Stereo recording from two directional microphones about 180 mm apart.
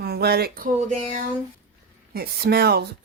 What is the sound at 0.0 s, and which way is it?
Speech, 60° right (ahead or behind).